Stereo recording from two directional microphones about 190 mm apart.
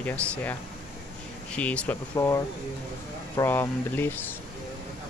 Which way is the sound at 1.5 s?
5° left (ahead or behind).